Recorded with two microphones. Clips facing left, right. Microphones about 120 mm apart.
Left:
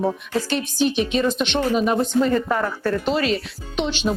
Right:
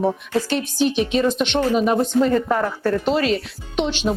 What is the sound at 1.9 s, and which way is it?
Speech, 35° right (ahead or behind).